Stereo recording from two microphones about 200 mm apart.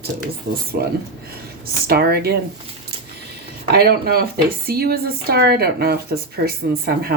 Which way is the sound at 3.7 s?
50° right (ahead or behind).